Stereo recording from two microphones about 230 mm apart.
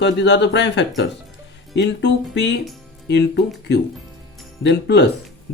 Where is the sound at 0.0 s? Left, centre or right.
Left.